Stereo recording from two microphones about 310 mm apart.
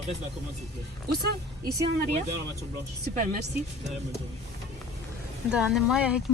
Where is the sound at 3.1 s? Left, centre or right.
Right.